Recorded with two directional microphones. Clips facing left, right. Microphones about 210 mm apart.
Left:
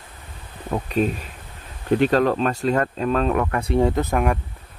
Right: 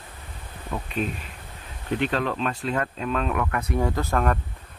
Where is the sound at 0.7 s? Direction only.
40° left (ahead or behind); by 4.4 s 10° left (ahead or behind).